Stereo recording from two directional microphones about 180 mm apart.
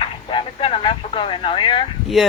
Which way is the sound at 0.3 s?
30° left (ahead or behind).